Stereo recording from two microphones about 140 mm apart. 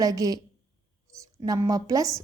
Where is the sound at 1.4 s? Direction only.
25° right (ahead or behind).